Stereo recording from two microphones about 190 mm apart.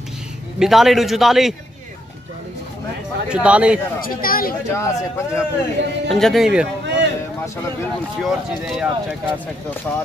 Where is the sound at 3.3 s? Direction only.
5° right (ahead or behind).